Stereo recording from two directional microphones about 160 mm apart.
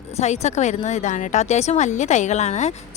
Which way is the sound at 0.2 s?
45° left (ahead or behind).